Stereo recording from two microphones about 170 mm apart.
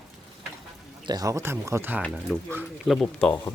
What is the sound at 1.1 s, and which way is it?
Speech, 20° right (ahead or behind).